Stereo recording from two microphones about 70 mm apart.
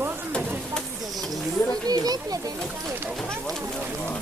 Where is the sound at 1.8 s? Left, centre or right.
Right.